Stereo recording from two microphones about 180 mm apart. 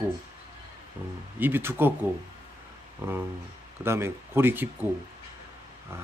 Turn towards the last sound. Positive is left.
turn(degrees=-10)  # may be behind; listen again after turning